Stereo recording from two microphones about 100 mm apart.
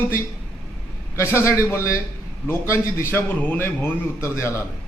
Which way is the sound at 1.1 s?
25° left (ahead or behind).